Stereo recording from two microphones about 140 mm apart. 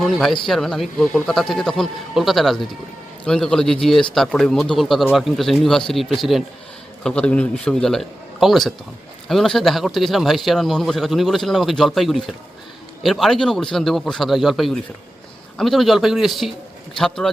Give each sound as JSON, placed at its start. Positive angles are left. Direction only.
{"t": 0.0, "sound": "a man's voice", "side_deg": 0}